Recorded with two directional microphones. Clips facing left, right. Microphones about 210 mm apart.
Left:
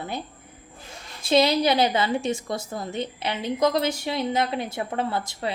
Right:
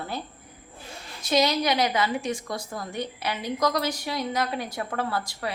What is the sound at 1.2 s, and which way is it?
A woman's voice, 30° left (ahead or behind).